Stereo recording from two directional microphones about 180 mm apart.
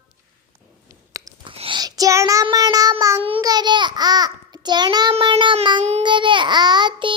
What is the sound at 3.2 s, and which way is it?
Child singing, 30° right (ahead or behind).